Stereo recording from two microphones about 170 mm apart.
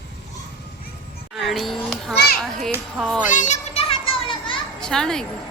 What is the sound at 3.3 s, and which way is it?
Children playing, 45° left (ahead or behind).